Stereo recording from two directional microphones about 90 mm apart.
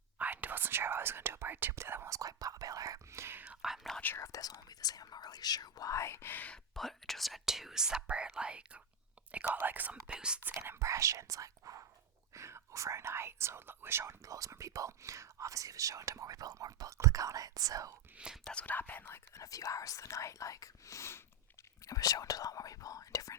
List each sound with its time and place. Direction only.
0.2 s whispering: 20° right (ahead or behind)
3.4 s whispering: 10° right (ahead or behind)
4.0 s whispering: 25° left (ahead or behind)
4.3 s whispering: 45° left (ahead or behind); by 6.6 s 20° left (ahead or behind)
6.7 s speech: centre (ahead or behind)
10.4 s speech: 25° right (ahead or behind)
18.4 s speech: 15° left (ahead or behind)
21.8 s speech: 40° left (ahead or behind)